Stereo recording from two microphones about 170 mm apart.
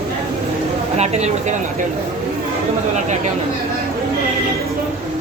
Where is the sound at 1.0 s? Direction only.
40° right (ahead or behind).